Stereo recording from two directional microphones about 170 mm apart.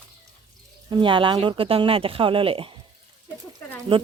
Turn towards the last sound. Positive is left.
turn(degrees=-30)  # may be behind; listen again after turning